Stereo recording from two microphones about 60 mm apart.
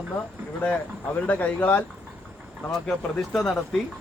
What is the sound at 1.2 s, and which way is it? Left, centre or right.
Speech, left.